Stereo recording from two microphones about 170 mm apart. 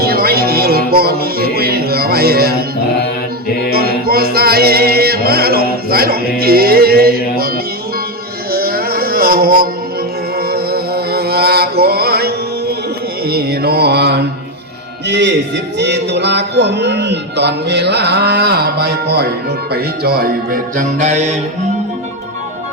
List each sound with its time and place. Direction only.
0.0 s music: 65° right (ahead or behind)
4.0 s music: 65° right (ahead or behind)
8.5 s music: 60° right (ahead or behind)
10.3 s chant: 65° right (ahead or behind)
13.2 s mantra: 65° right (ahead or behind)
15.0 s a man's voice: 90° right; by 19.3 s 75° right (ahead or behind)
19.7 s music: 65° right (ahead or behind); by 21.2 s 45° right (ahead or behind)